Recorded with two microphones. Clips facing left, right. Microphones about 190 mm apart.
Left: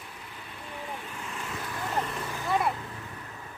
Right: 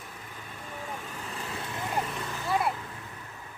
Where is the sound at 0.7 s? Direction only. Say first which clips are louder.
Even; 40° right (ahead or behind); by 1.9 s 25° right (ahead or behind).